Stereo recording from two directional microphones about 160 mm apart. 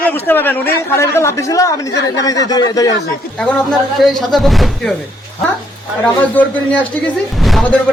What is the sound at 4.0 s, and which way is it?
Speech, centre (ahead or behind).